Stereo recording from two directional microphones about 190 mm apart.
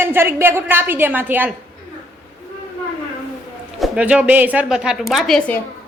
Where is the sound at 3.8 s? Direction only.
5° right (ahead or behind).